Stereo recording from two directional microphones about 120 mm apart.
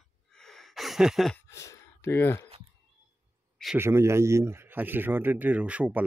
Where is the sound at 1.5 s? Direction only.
25° left (ahead or behind).